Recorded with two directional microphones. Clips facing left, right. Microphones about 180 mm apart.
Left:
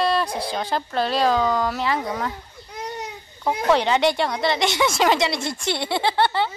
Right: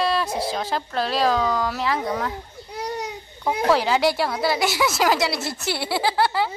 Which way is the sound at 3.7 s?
5° right (ahead or behind).